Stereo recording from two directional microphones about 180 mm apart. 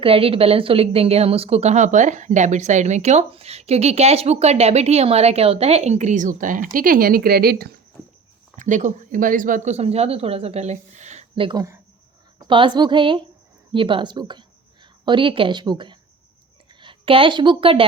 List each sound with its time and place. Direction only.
0.0 s a woman's voice: 30° right (ahead or behind); by 7.7 s 55° right (ahead or behind)
8.5 s a woman's voice: 45° right (ahead or behind)